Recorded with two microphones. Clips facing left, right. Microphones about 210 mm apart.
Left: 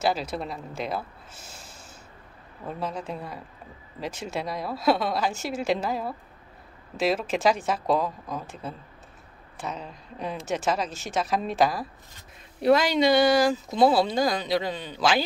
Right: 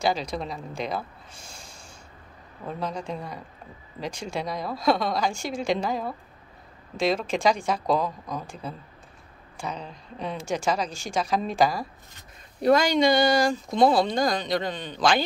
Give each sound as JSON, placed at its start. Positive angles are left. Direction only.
{"t": 0.0, "sound": "speech", "side_deg": 5}